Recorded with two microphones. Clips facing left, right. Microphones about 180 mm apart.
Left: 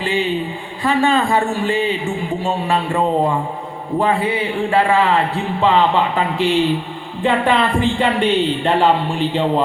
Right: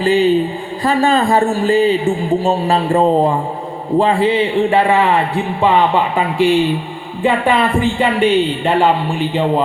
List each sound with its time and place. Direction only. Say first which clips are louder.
0.0 s a man's voice: right 7 dB; 40° right (ahead or behind); by 8.9 s 10° right (ahead or behind)